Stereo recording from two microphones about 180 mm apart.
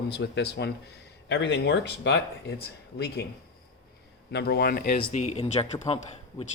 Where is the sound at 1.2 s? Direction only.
80° left; by 3.2 s 65° left (ahead or behind).